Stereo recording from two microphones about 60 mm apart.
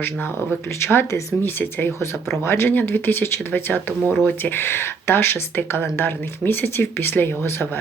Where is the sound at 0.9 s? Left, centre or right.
Left.